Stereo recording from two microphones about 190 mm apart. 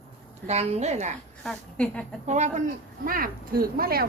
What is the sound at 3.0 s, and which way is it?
Speech, 50° right (ahead or behind).